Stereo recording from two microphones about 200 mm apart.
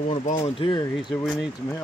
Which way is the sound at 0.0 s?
35° left (ahead or behind).